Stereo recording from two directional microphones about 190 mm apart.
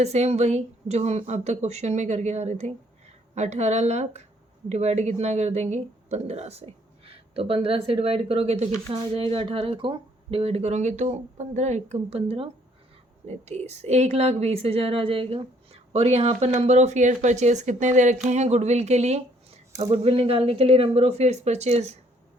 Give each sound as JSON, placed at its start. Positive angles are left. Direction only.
{"t": 0.0, "sound": "a woman's voice", "side_deg": -35}